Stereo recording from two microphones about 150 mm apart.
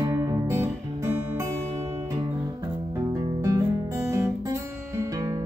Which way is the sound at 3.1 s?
20° right (ahead or behind).